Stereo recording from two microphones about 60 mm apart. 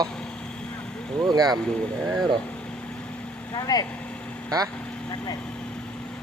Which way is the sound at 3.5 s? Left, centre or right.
Left.